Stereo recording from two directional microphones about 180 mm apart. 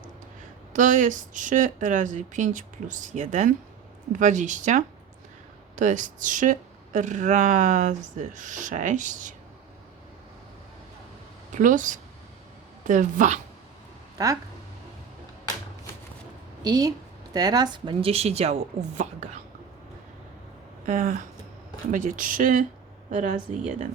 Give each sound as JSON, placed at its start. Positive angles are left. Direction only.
{"t": 0.7, "sound": "speech", "side_deg": -45}
{"t": 11.5, "sound": "speech", "side_deg": -45}
{"t": 14.2, "sound": "a woman's voice", "side_deg": -20}
{"t": 16.6, "sound": "a woman's voice", "side_deg": -20}
{"t": 20.8, "sound": "speech", "side_deg": -45}